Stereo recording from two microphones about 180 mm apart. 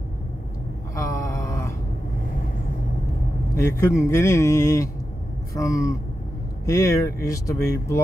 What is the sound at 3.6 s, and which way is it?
Speech, 15° left (ahead or behind).